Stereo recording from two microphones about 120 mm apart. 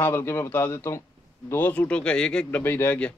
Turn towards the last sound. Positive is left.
turn(degrees=15)  # may be behind; listen again after turning